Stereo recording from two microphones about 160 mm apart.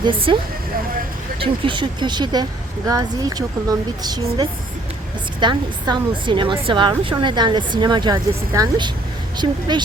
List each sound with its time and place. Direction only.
0.0 s speech: 35° right (ahead or behind)
1.4 s a woman's voice: 30° right (ahead or behind)